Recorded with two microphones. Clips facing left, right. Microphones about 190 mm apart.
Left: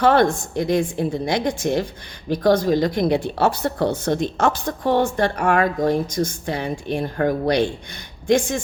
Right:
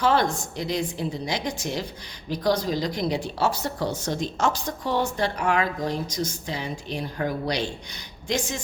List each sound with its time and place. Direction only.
0.0 s a woman's voice: 55° left (ahead or behind)